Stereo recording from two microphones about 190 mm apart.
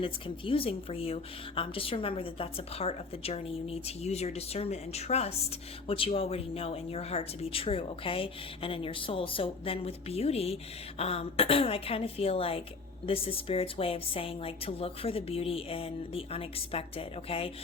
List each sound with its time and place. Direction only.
0.0 s a woman's voice: 30° left (ahead or behind)